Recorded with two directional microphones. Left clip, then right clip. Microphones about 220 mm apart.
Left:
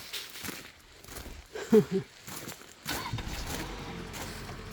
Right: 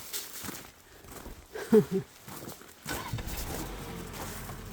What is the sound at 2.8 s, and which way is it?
Vehicle, 45° left (ahead or behind).